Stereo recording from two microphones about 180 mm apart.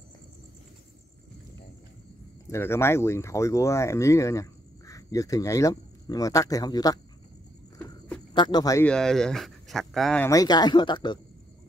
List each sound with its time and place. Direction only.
2.4 s speech: 15° left (ahead or behind)
8.4 s speech: 25° left (ahead or behind)
8.8 s speech: 5° left (ahead or behind)
10.2 s speech: 20° left (ahead or behind)